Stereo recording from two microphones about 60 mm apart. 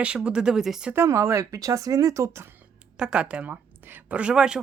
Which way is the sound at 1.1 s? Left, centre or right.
Right.